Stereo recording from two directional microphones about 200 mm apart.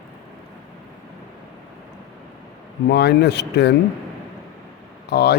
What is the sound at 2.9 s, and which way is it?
Speech, 55° left (ahead or behind).